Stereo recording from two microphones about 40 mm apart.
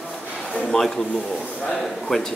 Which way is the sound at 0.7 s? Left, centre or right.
Centre.